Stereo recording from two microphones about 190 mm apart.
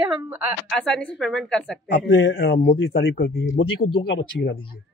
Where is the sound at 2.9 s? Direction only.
55° left (ahead or behind).